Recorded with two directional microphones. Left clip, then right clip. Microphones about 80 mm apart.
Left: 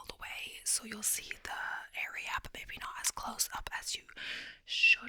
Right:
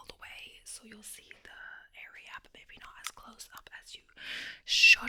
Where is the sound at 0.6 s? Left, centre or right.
Left.